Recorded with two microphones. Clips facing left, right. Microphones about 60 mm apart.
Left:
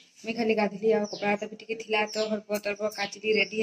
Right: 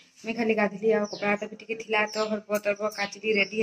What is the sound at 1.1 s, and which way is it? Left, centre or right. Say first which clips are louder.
Speech: right 1 dB; right.